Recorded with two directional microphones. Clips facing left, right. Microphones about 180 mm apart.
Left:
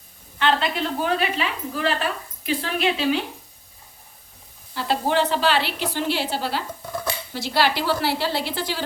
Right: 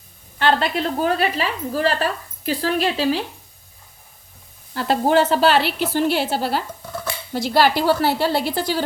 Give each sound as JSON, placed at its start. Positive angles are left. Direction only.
{"t": 0.3, "sound": "a woman's voice", "side_deg": -40}
{"t": 4.7, "sound": "a woman's voice", "side_deg": -45}